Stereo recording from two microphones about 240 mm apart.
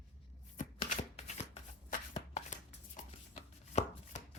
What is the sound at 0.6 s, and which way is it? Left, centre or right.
Shuffling cards, left.